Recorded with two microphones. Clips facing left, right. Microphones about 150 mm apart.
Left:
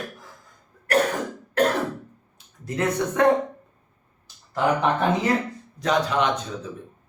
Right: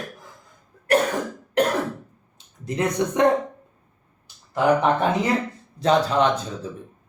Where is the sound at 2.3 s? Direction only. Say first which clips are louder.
Right 2 dB; 20° right (ahead or behind).